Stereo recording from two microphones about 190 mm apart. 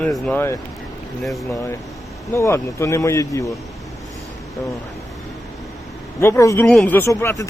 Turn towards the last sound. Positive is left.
turn(degrees=15)  # may be behind; listen again after turning